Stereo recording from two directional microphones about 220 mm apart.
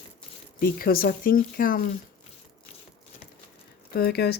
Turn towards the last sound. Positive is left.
turn(degrees=45)  # may be behind; listen again after turning